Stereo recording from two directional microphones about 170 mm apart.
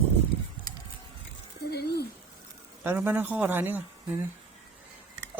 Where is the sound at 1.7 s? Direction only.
70° left (ahead or behind).